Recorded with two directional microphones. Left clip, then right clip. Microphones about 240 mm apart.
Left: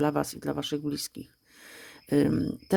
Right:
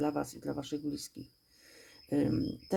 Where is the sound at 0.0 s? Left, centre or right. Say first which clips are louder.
Left 6 dB; left.